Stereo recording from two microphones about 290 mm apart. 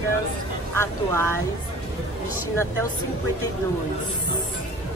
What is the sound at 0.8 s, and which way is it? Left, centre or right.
Speech, centre.